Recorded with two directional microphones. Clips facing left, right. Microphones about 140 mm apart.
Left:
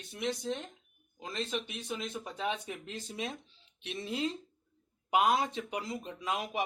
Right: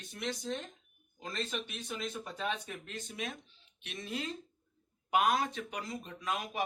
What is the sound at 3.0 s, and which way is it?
Speech, 30° left (ahead or behind).